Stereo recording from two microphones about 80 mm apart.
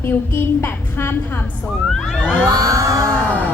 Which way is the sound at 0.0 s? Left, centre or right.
Left.